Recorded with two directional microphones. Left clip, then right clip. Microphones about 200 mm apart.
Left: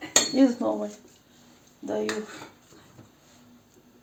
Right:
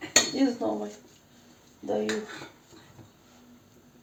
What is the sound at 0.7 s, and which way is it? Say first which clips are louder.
Speech: left 3 dB; 35° left (ahead or behind).